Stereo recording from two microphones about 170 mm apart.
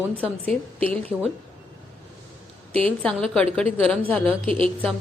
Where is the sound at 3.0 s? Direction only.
5° left (ahead or behind).